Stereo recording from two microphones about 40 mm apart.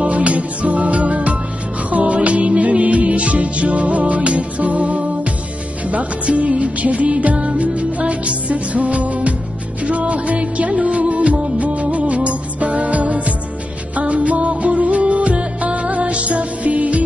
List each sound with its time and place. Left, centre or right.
0.1 s music: right